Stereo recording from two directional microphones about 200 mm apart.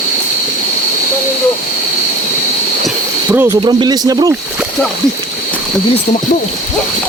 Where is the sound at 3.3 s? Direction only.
10° right (ahead or behind).